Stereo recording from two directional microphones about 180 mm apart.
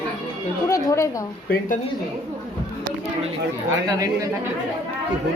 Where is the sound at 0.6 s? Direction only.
20° left (ahead or behind).